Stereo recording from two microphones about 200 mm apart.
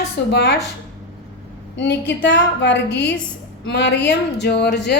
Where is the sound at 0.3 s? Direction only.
55° left (ahead or behind).